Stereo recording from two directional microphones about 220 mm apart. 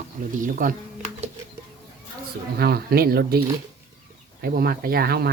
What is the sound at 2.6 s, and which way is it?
Speech, 45° right (ahead or behind).